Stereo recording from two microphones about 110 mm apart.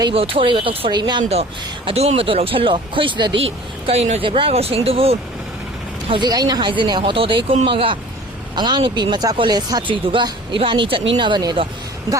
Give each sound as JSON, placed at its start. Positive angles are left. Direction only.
{"t": 0.1, "sound": "speech", "side_deg": -60}
{"t": 0.9, "sound": "speech", "side_deg": -40}
{"t": 1.2, "sound": "speech", "side_deg": -70}
{"t": 3.4, "sound": "speech", "side_deg": -65}
{"t": 6.1, "sound": "speech", "side_deg": -40}